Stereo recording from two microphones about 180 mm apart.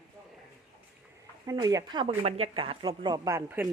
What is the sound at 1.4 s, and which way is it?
Speech, 20° right (ahead or behind).